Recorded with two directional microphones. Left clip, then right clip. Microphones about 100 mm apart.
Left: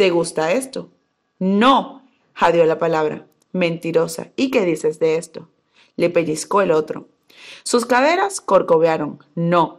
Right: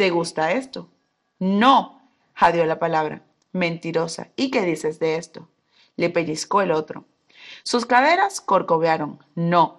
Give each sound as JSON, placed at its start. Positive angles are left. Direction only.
{"t": 0.0, "sound": "speech", "side_deg": 35}